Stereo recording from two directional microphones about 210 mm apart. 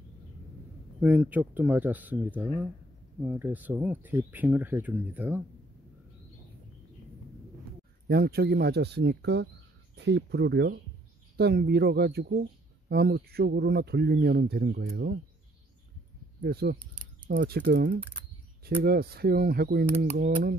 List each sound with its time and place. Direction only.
1.0 s speech: 10° right (ahead or behind)
8.1 s speech: 50° right (ahead or behind)
16.4 s speech: 50° right (ahead or behind)